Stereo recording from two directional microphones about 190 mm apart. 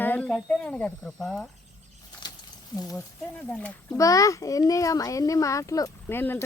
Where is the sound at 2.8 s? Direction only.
20° left (ahead or behind).